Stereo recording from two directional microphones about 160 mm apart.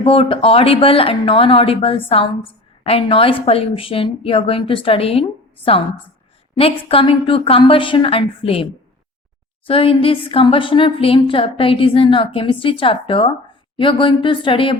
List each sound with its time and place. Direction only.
0.0 s speech: 35° left (ahead or behind)
6.6 s speech: 35° left (ahead or behind)